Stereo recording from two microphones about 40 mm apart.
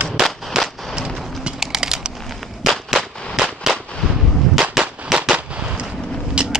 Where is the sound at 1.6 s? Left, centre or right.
Centre.